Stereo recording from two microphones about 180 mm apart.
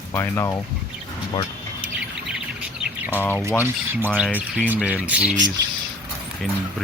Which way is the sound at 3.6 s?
10° right (ahead or behind).